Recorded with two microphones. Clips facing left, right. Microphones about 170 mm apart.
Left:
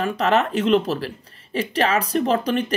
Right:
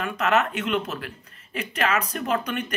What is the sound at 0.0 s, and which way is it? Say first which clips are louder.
Speech: left 3 dB; 35° left (ahead or behind).